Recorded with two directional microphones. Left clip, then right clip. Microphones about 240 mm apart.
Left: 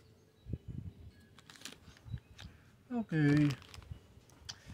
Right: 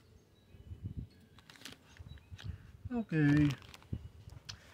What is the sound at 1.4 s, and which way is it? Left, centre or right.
Typing, centre.